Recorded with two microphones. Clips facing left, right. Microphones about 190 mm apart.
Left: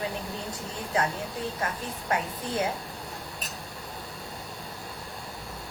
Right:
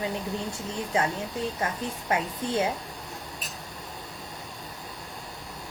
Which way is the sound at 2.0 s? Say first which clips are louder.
Right 1 dB; 25° right (ahead or behind).